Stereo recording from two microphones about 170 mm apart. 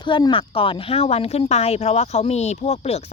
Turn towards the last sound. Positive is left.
turn(degrees=40)  # may be behind; listen again after turning